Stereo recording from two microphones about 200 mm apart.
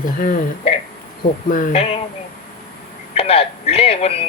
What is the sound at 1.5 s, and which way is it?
Speech, 35° left (ahead or behind).